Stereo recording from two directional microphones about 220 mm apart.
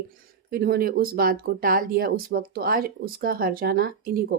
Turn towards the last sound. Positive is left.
turn(degrees=-40)  # may be behind; listen again after turning